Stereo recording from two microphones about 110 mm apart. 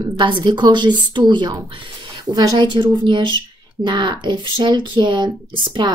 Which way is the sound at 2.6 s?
50° right (ahead or behind).